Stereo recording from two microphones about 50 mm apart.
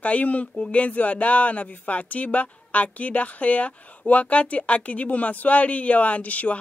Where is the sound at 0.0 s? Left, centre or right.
Left.